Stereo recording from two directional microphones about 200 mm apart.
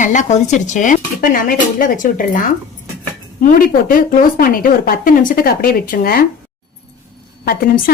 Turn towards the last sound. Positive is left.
turn(degrees=45)  # may be behind; listen again after turning